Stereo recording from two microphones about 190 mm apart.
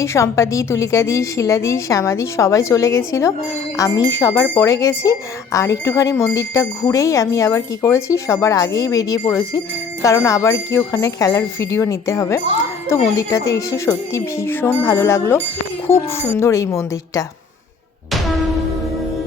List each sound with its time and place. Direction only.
0.0 s speech: 15° left (ahead or behind)